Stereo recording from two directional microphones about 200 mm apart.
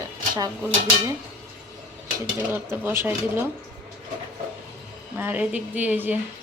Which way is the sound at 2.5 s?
10° right (ahead or behind).